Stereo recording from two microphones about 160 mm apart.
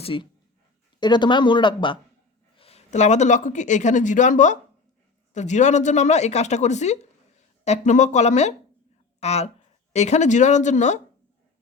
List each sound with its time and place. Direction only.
0.0 s speech: 35° left (ahead or behind)